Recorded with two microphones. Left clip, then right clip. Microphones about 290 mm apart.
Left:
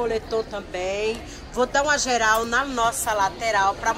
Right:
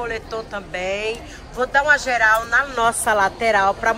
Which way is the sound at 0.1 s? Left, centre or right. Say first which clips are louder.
Left 1 dB; centre.